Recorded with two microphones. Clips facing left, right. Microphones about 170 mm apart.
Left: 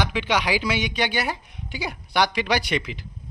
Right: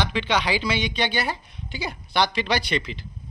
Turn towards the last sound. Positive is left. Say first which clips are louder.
# left 1 dB
turn(degrees=15)  # may be behind; listen again after turning